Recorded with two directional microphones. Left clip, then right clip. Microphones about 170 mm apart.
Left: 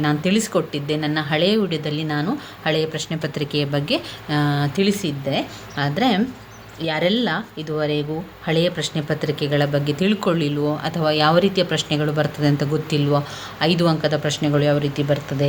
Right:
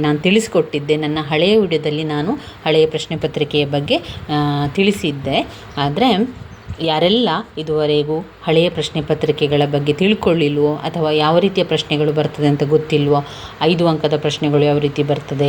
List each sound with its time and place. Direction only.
0.0 s speech: 20° right (ahead or behind)